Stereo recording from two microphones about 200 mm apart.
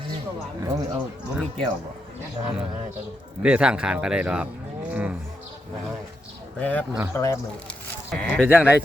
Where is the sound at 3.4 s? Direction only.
5° right (ahead or behind).